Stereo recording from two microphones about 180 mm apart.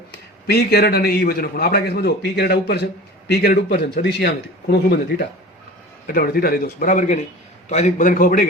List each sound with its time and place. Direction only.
0.4 s a man's voice: 60° left (ahead or behind)